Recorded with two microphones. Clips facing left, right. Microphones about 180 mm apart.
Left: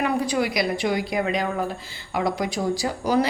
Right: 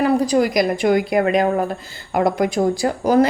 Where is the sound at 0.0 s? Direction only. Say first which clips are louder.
Right 7 dB; 35° right (ahead or behind).